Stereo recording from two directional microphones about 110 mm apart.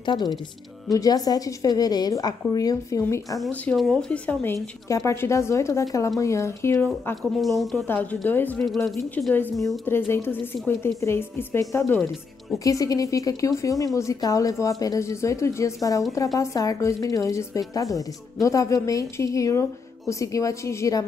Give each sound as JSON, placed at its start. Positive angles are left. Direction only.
{"t": 0.0, "sound": "a woman's voice", "side_deg": 40}
{"t": 3.7, "sound": "speech", "side_deg": 0}
{"t": 4.1, "sound": "a woman's voice", "side_deg": 15}
{"t": 4.8, "sound": "a woman's voice", "side_deg": 30}
{"t": 7.2, "sound": "speech", "side_deg": 0}
{"t": 7.8, "sound": "a woman's voice", "side_deg": 15}
{"t": 8.6, "sound": "speech", "side_deg": 0}
{"t": 9.8, "sound": "a woman's voice", "side_deg": 20}